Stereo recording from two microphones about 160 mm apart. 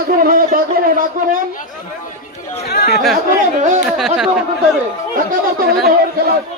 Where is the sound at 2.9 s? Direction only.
Centre (ahead or behind).